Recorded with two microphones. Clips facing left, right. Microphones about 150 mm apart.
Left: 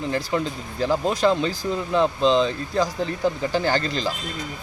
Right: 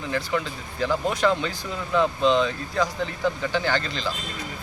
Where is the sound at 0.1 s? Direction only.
35° left (ahead or behind).